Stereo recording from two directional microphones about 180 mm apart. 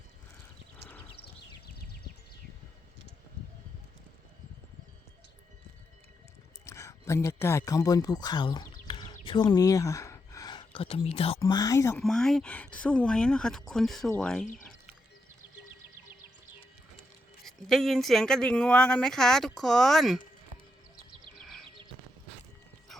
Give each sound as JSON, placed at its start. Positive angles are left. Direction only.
{"t": 1.2, "sound": "a sound", "side_deg": 60}
{"t": 6.7, "sound": "speech", "side_deg": 15}
{"t": 11.3, "sound": "speech", "side_deg": 20}
{"t": 11.9, "sound": "speech", "side_deg": 5}
{"t": 17.4, "sound": "speech", "side_deg": 0}
{"t": 21.3, "sound": "a sound", "side_deg": 0}